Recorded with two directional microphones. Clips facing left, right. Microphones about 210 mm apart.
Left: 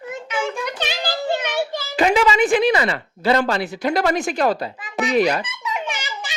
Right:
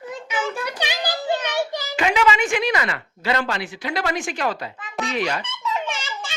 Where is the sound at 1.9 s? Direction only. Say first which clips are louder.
Left 3 dB; 40° left (ahead or behind).